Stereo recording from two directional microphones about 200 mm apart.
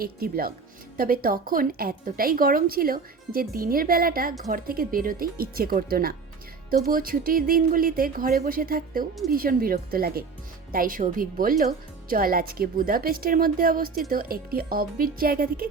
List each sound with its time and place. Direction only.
0.0 s a woman's voice: 50° right (ahead or behind)